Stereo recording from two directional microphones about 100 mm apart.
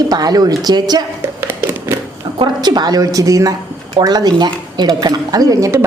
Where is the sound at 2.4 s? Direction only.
45° right (ahead or behind).